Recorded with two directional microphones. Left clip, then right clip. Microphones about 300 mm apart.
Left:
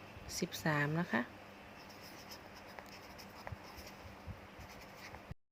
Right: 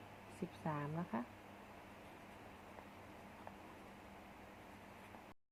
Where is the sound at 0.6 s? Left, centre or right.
Left.